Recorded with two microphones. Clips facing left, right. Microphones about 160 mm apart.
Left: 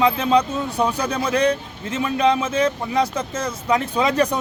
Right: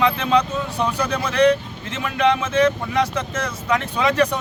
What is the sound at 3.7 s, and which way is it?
Speech, 30° left (ahead or behind).